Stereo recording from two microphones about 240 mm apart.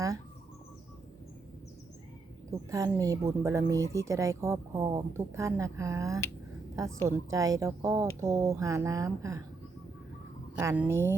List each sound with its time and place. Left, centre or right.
2.5 s speech: centre
10.6 s speech: centre